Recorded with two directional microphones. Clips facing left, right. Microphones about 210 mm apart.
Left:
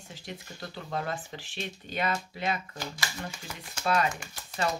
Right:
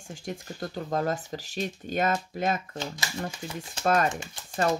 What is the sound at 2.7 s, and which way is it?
Speech, 25° right (ahead or behind).